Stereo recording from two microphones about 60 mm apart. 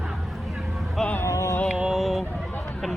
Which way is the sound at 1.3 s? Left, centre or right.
Left.